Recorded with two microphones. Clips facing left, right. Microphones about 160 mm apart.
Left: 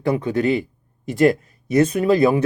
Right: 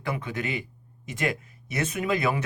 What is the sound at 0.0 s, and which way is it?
Speech, 40° left (ahead or behind).